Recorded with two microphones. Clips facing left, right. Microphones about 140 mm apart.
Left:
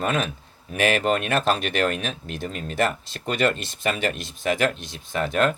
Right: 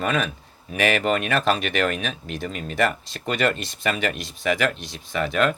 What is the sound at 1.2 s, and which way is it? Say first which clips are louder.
Speech: even; 50° right (ahead or behind).